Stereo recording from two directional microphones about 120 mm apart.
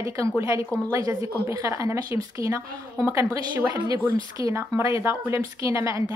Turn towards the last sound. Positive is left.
turn(degrees=-25)  # may be behind; listen again after turning